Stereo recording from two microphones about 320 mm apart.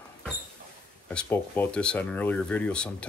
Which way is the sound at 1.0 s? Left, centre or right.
Centre.